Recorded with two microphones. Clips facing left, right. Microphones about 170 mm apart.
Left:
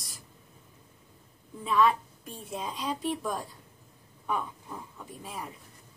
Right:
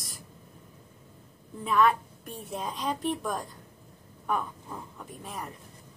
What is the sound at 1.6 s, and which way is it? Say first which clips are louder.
A woman's voice: right 1 dB; centre (ahead or behind).